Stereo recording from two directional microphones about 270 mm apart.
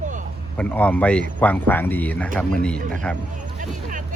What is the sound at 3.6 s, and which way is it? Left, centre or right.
Speech, right.